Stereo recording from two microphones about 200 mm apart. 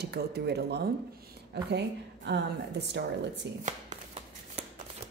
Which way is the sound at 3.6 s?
35° right (ahead or behind).